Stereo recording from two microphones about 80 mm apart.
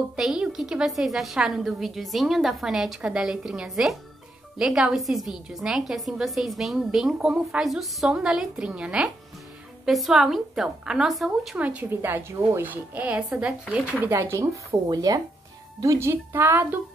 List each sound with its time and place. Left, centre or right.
0.1 s a woman's voice: centre
9.8 s a woman's voice: centre
11.5 s speech: centre
12.0 s speech: right
14.1 s speech: right
15.8 s speech: right